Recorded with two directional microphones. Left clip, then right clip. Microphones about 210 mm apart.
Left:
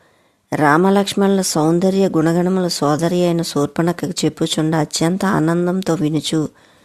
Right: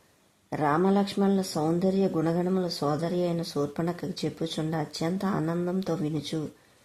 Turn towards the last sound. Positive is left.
turn(degrees=35)  # may be behind; listen again after turning